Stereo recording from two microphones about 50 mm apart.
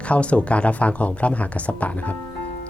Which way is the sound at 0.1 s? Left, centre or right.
Left.